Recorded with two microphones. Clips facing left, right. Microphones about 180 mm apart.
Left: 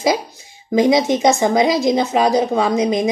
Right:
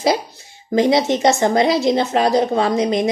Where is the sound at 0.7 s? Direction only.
15° left (ahead or behind).